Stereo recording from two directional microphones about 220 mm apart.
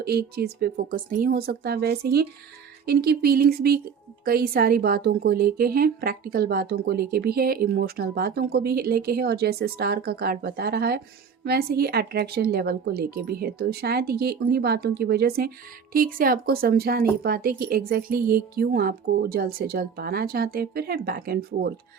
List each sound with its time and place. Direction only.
0.0 s speech: 45° right (ahead or behind)